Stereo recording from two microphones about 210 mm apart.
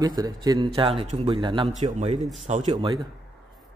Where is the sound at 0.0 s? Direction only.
20° right (ahead or behind); by 2.2 s 35° right (ahead or behind).